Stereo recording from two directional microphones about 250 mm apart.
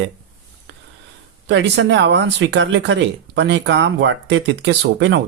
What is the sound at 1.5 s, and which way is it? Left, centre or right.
Speech, right.